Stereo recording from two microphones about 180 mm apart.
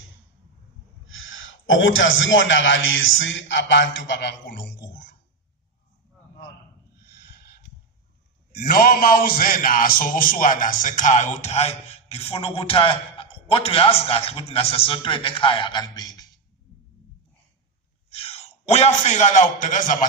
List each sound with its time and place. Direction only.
1.0 s a man's voice: 90° left
7.1 s a sound: 65° left (ahead or behind)
8.5 s a man's voice: 55° left (ahead or behind); by 16.2 s 20° left (ahead or behind)
18.1 s a man's voice: 35° left (ahead or behind)